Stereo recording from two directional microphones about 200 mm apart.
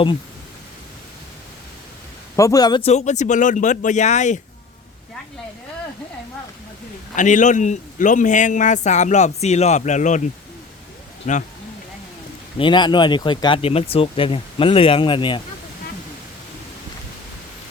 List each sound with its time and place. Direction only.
2.3 s a man's voice: 15° left (ahead or behind); by 4.4 s 35° left (ahead or behind)
7.2 s a man's voice: 40° left (ahead or behind)
11.3 s a man's voice: 35° left (ahead or behind)
12.5 s speech: 25° left (ahead or behind)